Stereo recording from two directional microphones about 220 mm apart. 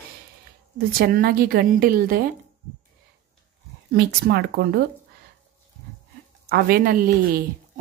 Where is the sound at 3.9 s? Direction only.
45° right (ahead or behind).